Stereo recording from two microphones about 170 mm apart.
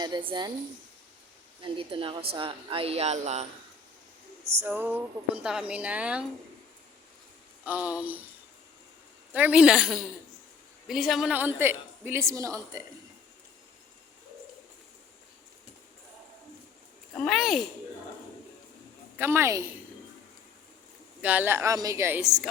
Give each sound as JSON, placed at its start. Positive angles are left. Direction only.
{"t": 0.0, "sound": "a woman's voice", "side_deg": -30}
{"t": 1.6, "sound": "speech", "side_deg": -30}
{"t": 4.6, "sound": "a woman's voice", "side_deg": -10}
{"t": 7.6, "sound": "a woman's voice", "side_deg": -10}
{"t": 9.3, "sound": "a woman's voice", "side_deg": -10}
{"t": 17.2, "sound": "a woman's voice", "side_deg": 0}
{"t": 19.1, "sound": "a woman's voice", "side_deg": -15}
{"t": 21.2, "sound": "a woman's voice", "side_deg": -10}